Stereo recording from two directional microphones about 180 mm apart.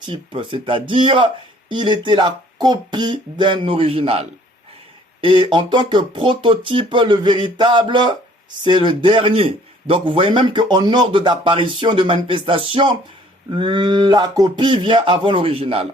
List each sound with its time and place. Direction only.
0.0 s a man's voice: 30° right (ahead or behind)